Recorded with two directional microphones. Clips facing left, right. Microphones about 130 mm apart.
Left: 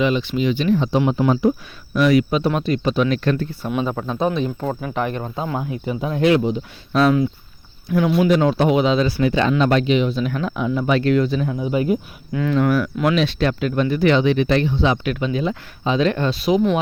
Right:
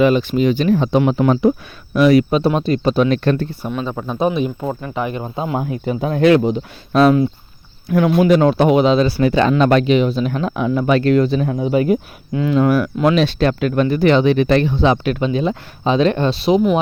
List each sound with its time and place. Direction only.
0.0 s speech: 50° right (ahead or behind)
2.0 s speech: 35° right (ahead or behind)
3.7 s speech: 5° left (ahead or behind)
3.9 s speech: 10° right (ahead or behind)
5.6 s speech: 50° right (ahead or behind)
7.9 s speech: 60° right (ahead or behind)
10.1 s speech: 35° right (ahead or behind)
10.5 s speech: 55° right (ahead or behind)
11.7 s speech: 75° right (ahead or behind)
12.3 s speech: 25° right (ahead or behind)
13.5 s speech: 55° right (ahead or behind)
13.8 s speech: 40° right (ahead or behind)
14.8 s speech: 35° right (ahead or behind)